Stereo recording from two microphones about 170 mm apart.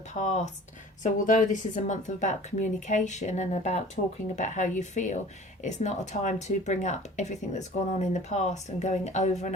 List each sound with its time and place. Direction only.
0.1 s speech: 45° left (ahead or behind)